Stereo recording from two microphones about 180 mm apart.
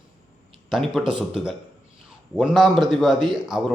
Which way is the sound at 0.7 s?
Centre (ahead or behind).